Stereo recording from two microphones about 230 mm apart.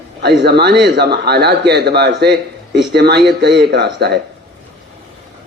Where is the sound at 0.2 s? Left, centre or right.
Right.